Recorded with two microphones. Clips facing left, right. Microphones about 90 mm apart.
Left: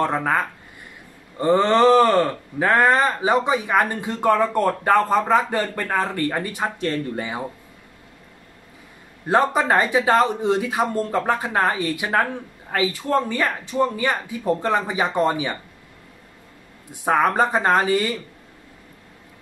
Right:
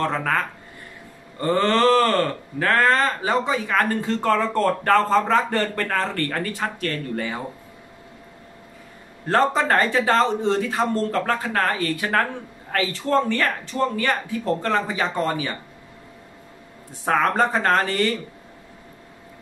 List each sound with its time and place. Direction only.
0.0 s speech: 15° left (ahead or behind)
9.3 s speech: 10° left (ahead or behind)
17.0 s speech: 10° left (ahead or behind)